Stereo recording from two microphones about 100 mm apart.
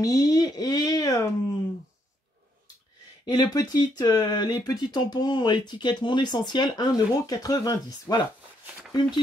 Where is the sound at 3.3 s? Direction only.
40° left (ahead or behind).